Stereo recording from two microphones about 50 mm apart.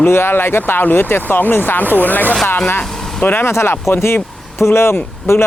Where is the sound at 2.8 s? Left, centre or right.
Left.